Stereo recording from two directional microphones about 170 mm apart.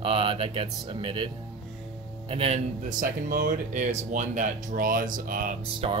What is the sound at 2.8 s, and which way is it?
Speech, 55° right (ahead or behind).